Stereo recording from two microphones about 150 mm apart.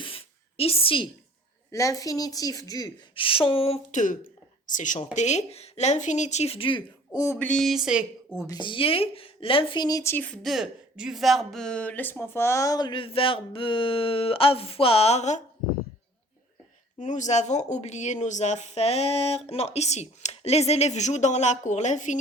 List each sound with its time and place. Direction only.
0.0 s a sound: 40° left (ahead or behind)
1.7 s speech: 20° left (ahead or behind)
3.2 s speech: 35° left (ahead or behind)
3.9 s speech: 60° left (ahead or behind); by 7.3 s 25° left (ahead or behind)
7.3 s a sound: 5° left (ahead or behind)
8.4 s speech: 30° left (ahead or behind); by 15.4 s 50° left (ahead or behind)
17.0 s speech: 55° left (ahead or behind)